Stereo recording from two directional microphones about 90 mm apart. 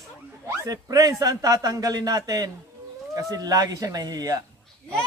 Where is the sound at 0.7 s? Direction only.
40° right (ahead or behind).